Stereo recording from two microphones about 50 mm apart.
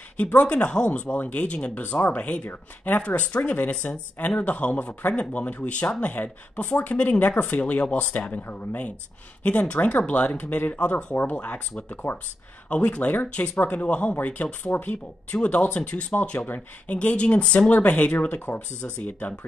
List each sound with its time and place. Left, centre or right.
0.2 s speech: left
3.7 s speech: left
10.8 s speech: left